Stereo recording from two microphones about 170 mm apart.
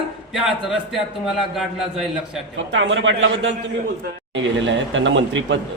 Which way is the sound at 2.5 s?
90° right.